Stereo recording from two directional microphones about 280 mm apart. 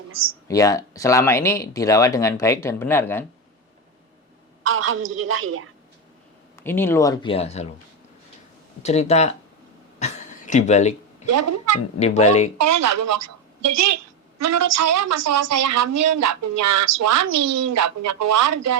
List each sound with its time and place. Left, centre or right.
0.4 s speech: centre
4.6 s a woman's voice: right
6.6 s speech: centre
8.8 s speech: left
10.0 s a sound: left
11.3 s a woman's voice: right
11.9 s speech: left
12.5 s a woman's voice: right